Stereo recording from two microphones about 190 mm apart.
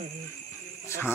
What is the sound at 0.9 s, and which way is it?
Cricket, 10° left (ahead or behind).